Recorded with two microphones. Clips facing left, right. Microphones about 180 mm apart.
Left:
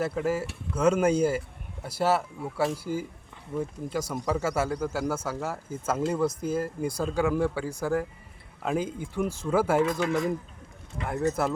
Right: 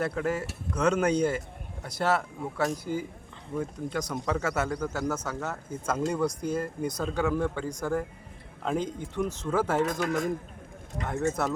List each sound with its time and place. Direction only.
0.0 s speech: 5° left (ahead or behind)
9.8 s speech: 45° right (ahead or behind)
11.4 s speech: 5° left (ahead or behind)